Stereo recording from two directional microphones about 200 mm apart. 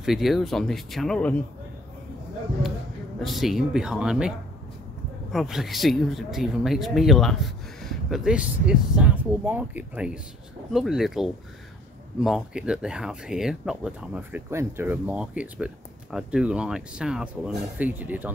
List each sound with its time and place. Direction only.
0.0 s speech: centre (ahead or behind)
3.2 s speech: centre (ahead or behind)
5.3 s speech: centre (ahead or behind)